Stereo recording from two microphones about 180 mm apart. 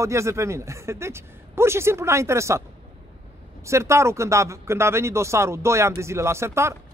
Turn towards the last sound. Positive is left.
turn(degrees=-15)  # may be behind; listen again after turning